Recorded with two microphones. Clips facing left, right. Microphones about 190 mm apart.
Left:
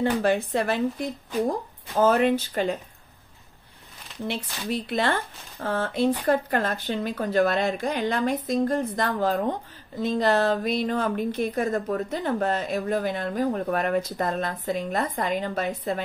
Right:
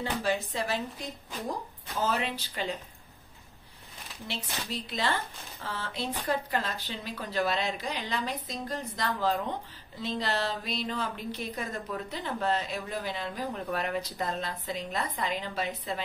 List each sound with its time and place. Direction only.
0.0 s speech: 55° left (ahead or behind)
4.3 s speech: 55° left (ahead or behind)